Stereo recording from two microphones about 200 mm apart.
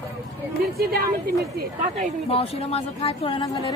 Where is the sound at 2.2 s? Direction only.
30° left (ahead or behind).